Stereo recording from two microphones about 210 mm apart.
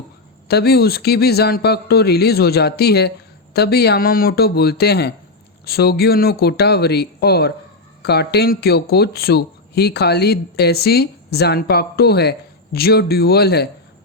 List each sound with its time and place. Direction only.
0.4 s speech: 50° left (ahead or behind)